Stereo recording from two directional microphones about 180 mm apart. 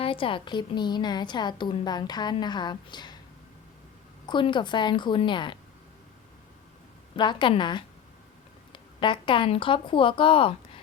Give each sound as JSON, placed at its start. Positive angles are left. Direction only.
{"t": 0.0, "sound": "a woman's voice", "side_deg": 30}
{"t": 4.3, "sound": "a woman's voice", "side_deg": 25}
{"t": 7.2, "sound": "a woman's voice", "side_deg": 25}